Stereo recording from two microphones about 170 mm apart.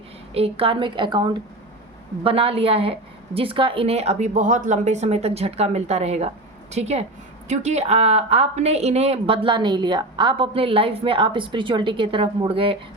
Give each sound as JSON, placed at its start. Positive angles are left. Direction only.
{"t": 0.3, "sound": "a woman's voice", "side_deg": -35}